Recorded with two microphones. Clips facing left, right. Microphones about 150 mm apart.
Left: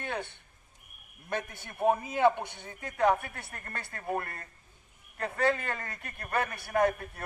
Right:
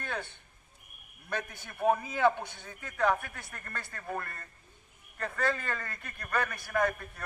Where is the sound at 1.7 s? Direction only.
20° left (ahead or behind).